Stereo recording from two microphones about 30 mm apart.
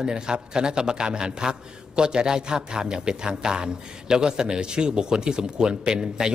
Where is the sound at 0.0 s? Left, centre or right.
Right.